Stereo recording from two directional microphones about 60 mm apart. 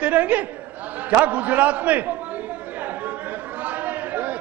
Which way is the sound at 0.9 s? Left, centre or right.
Right.